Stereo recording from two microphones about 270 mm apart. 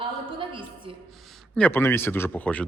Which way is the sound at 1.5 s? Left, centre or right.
Centre.